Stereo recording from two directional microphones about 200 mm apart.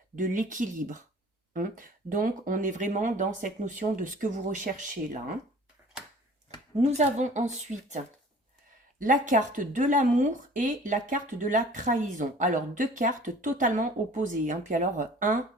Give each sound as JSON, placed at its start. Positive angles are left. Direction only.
{"t": 0.2, "sound": "speech", "side_deg": -40}
{"t": 6.7, "sound": "speech", "side_deg": -35}